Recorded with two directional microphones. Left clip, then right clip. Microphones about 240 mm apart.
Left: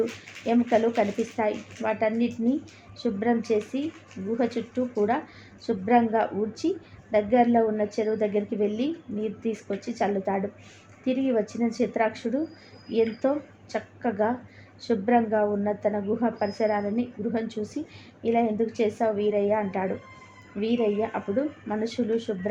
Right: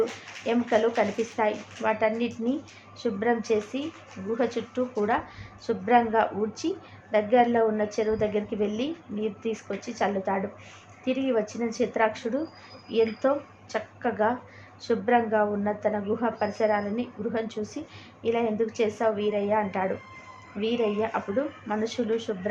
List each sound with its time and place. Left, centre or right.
0.4 s speech: centre